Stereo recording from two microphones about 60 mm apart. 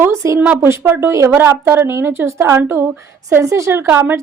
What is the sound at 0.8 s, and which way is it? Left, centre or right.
Speech, right.